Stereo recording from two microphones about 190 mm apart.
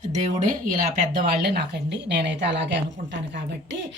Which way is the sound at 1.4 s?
60° right (ahead or behind).